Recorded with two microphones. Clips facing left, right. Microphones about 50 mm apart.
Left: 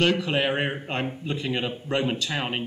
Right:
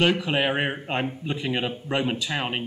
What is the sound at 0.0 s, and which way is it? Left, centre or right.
Speech, centre.